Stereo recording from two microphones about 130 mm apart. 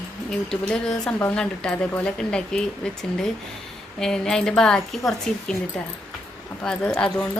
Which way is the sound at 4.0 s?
5° left (ahead or behind).